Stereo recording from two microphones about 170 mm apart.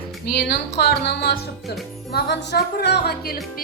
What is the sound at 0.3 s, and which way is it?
Speech, 70° left (ahead or behind).